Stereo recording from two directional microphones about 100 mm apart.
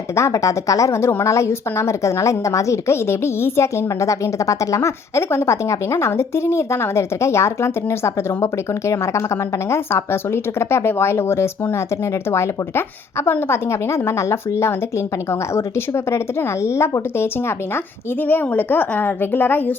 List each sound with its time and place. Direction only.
0.2 s a woman's voice: 30° left (ahead or behind)